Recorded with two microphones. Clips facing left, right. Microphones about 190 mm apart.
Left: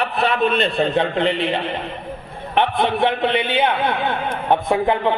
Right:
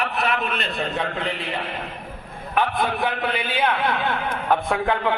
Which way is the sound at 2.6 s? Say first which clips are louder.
Left 5 dB; 25° left (ahead or behind).